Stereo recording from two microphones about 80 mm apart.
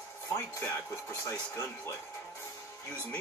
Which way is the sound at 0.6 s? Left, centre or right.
Left.